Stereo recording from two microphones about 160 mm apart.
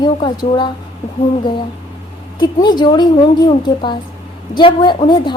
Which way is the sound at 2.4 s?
25° left (ahead or behind).